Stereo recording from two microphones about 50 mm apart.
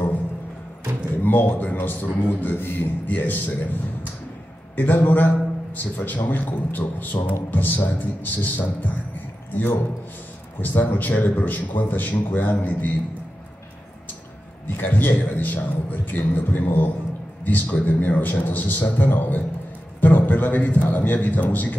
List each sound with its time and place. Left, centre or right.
1.1 s a man's voice: left
3.1 s a man's voice: left
14.8 s a man's voice: left